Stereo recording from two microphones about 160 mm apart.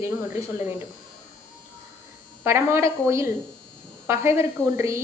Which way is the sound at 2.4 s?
15° right (ahead or behind).